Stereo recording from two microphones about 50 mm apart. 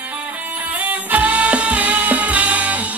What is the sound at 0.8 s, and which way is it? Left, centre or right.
Music, right.